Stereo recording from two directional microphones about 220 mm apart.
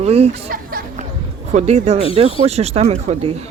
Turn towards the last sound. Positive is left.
turn(degrees=-25)  # may be behind; listen again after turning